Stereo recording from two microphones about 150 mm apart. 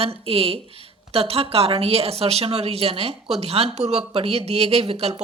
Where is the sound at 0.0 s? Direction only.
40° right (ahead or behind).